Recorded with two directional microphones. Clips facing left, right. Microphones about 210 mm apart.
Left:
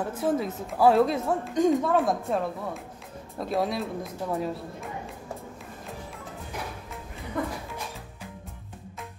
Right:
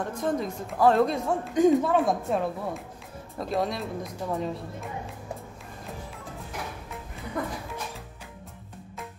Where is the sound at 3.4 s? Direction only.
Centre (ahead or behind).